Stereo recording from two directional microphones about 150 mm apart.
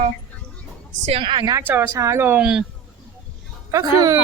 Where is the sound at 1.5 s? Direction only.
15° right (ahead or behind).